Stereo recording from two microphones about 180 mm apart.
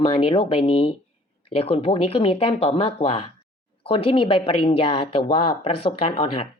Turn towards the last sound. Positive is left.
turn(degrees=30)  # may be behind; listen again after turning